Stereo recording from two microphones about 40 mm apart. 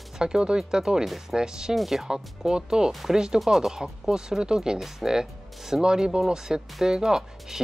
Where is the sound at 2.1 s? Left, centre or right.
Centre.